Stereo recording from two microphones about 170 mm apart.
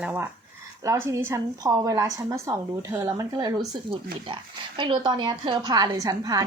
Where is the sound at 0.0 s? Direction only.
10° right (ahead or behind).